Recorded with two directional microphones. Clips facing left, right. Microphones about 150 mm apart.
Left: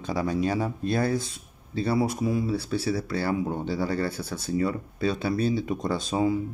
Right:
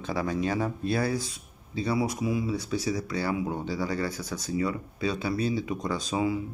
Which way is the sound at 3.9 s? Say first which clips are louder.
Left 2 dB; 60° left (ahead or behind).